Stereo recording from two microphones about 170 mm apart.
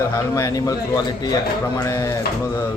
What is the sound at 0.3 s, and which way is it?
Speech, 20° left (ahead or behind).